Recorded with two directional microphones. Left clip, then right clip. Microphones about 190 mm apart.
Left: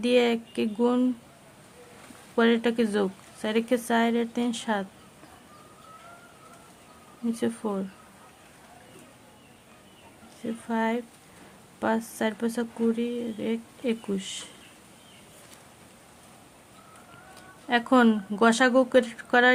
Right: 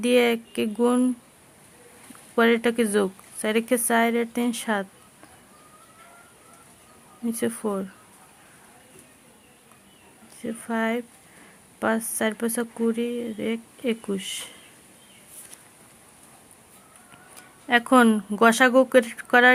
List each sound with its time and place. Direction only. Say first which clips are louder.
0.0 s speech: right 3 dB; 20° right (ahead or behind)
2.3 s speech: right 3 dB; 20° right (ahead or behind)
7.3 s speech: right 3 dB; 20° right (ahead or behind)
10.4 s speech: right 1 dB; 20° right (ahead or behind)
17.7 s speech: right 4 dB; 20° right (ahead or behind)